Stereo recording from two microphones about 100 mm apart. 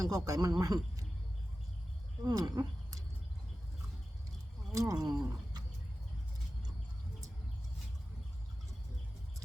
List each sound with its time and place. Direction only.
0.0 s speech: 40° right (ahead or behind)
2.2 s speech: 40° right (ahead or behind)
4.7 s speech: 35° right (ahead or behind)